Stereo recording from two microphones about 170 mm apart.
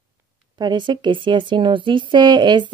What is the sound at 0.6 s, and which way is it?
A woman's voice, 25° right (ahead or behind).